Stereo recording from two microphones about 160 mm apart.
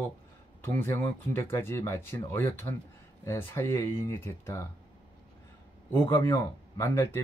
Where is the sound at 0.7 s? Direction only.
15° left (ahead or behind).